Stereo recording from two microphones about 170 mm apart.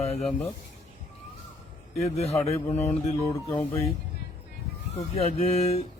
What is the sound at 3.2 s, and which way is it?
Speech, 20° left (ahead or behind).